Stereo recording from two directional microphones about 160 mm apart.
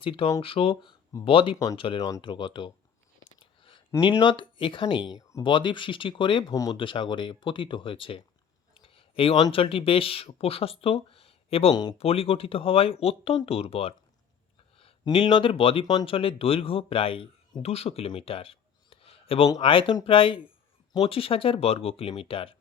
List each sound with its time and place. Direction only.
0.0 s speech: 35° left (ahead or behind)
1.5 s speech: 20° left (ahead or behind)
3.4 s a sound: 35° left (ahead or behind)
4.2 s speech: 30° left (ahead or behind)
11.7 s speech: 25° left (ahead or behind)
11.9 s speech: 35° left (ahead or behind)